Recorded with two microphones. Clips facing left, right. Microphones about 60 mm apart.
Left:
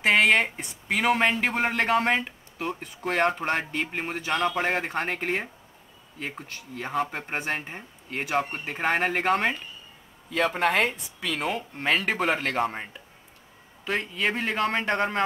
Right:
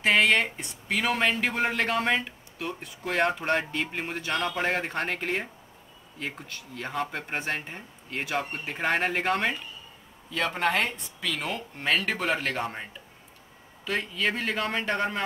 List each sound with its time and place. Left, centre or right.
0.0 s a man's voice: centre
10.3 s a man's voice: centre
11.1 s speech: left
13.8 s speech: left
14.9 s a man's voice: centre